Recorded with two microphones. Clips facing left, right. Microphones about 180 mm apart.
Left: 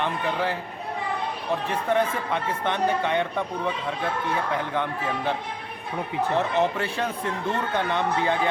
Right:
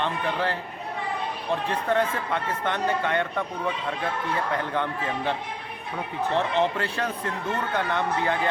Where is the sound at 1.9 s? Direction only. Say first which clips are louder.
Left 1 dB; 15° left (ahead or behind).